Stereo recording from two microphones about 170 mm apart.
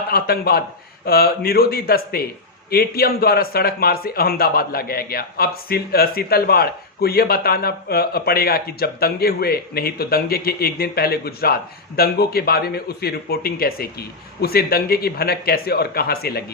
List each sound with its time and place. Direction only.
0.1 s a man's voice: 65° left (ahead or behind)